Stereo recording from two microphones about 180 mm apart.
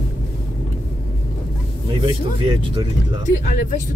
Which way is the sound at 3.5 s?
45° left (ahead or behind).